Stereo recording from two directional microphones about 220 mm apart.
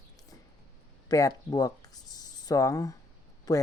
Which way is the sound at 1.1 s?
15° left (ahead or behind).